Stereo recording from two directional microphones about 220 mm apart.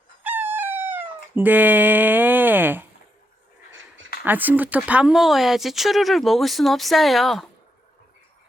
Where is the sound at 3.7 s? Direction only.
60° right (ahead or behind).